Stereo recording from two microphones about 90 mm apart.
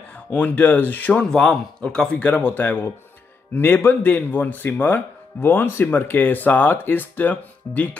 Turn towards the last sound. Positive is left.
turn(degrees=20)  # may be behind; listen again after turning